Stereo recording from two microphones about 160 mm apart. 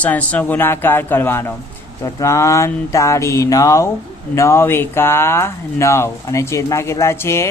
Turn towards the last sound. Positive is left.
turn(degrees=15)  # may be behind; listen again after turning